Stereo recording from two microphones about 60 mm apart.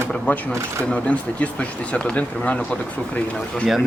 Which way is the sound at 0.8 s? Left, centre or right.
Centre.